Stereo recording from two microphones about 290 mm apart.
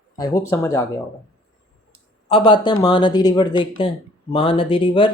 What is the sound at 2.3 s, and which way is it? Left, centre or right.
Speech, centre.